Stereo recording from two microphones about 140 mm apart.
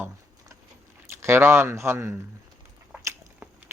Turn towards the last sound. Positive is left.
turn(degrees=-20)  # may be behind; listen again after turning